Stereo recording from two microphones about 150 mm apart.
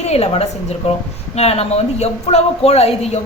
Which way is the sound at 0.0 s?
45° left (ahead or behind).